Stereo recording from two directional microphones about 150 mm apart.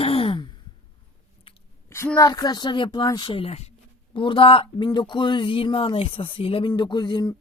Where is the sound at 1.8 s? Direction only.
15° left (ahead or behind).